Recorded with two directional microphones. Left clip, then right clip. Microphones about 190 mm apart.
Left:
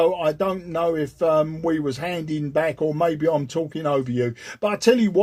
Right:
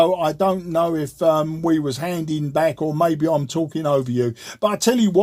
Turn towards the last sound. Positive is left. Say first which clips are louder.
# left 1 dB
turn(degrees=-45)  # may be behind; listen again after turning